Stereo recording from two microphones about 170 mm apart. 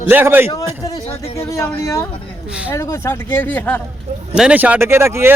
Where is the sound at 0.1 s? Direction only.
10° right (ahead or behind).